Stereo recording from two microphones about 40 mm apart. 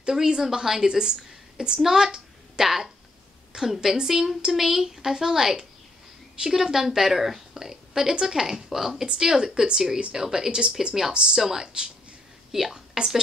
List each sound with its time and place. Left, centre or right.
0.0 s a woman's voice: centre
9.0 s a woman's voice: centre
12.9 s speech: centre